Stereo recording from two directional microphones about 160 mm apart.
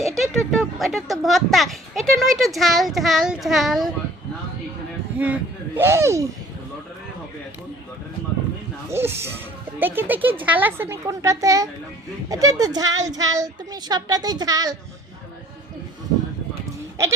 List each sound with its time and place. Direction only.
0.2 s a child's voice: centre (ahead or behind)
5.1 s speech: 10° right (ahead or behind)
8.9 s speech: 15° right (ahead or behind)